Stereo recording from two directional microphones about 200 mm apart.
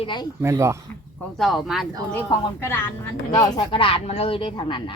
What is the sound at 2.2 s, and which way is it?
A woman's voice, 15° left (ahead or behind).